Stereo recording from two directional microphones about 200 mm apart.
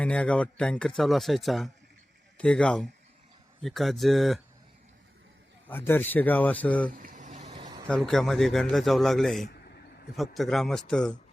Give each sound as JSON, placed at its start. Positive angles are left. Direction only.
{"t": 0.0, "sound": "speech", "side_deg": 5}
{"t": 5.6, "sound": "a man's voice", "side_deg": 10}
{"t": 6.9, "sound": "boiling", "side_deg": -45}
{"t": 7.5, "sound": "vehicle", "side_deg": -25}
{"t": 7.9, "sound": "speech", "side_deg": 5}